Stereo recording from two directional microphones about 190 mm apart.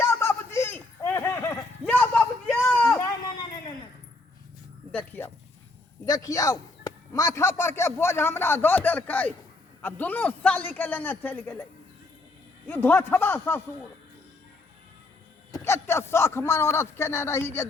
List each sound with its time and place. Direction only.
0.0 s a sound: 15° left (ahead or behind)
4.9 s dog: 10° left (ahead or behind)
6.1 s a man's voice: 20° left (ahead or behind)
12.6 s a man's voice: 10° left (ahead or behind)
15.5 s a man's voice: 15° left (ahead or behind)